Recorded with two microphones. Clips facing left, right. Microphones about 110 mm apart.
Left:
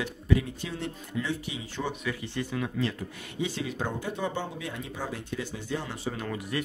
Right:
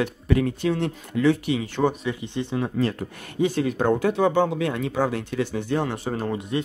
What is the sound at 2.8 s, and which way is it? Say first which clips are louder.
Speech: right 6 dB; 50° right (ahead or behind).